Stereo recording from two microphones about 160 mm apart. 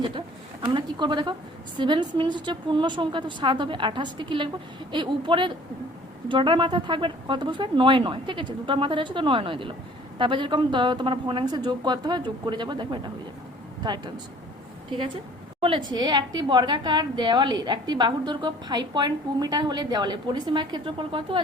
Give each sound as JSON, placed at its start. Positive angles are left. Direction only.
{"t": 0.6, "sound": "a woman's voice", "side_deg": -30}